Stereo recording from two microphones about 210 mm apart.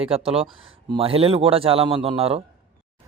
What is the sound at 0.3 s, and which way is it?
A man's voice, 25° right (ahead or behind).